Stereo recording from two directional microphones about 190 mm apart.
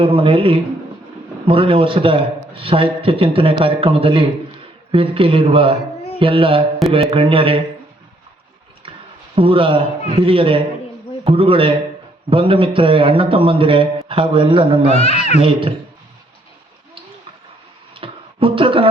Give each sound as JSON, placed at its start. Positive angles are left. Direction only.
{"t": 0.0, "sound": "a man's voice", "side_deg": -30}
{"t": 9.3, "sound": "a man's voice", "side_deg": -30}
{"t": 14.9, "sound": "speech", "side_deg": 35}
{"t": 15.4, "sound": "a man's voice", "side_deg": -30}
{"t": 17.9, "sound": "a sound", "side_deg": -30}